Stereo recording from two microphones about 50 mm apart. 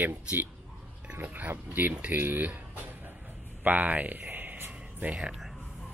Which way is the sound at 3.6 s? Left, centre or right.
Right.